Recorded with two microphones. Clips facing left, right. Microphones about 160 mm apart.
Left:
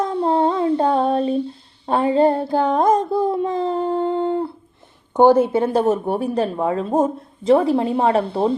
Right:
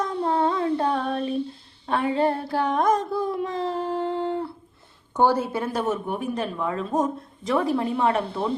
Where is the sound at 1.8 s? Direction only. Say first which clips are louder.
Left 6 dB; 30° left (ahead or behind).